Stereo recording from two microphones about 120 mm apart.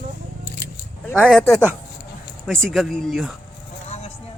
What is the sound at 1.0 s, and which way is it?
Speech, 10° left (ahead or behind).